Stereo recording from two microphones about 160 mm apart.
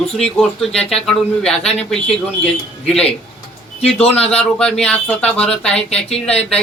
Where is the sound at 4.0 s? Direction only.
40° left (ahead or behind).